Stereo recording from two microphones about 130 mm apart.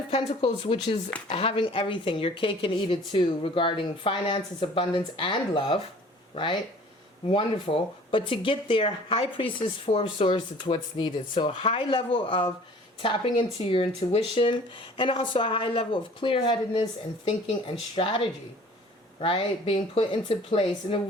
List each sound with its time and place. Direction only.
0.1 s speech: 45° left (ahead or behind)